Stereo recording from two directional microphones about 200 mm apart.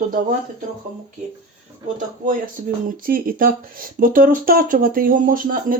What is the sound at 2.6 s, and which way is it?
Speech, 35° right (ahead or behind).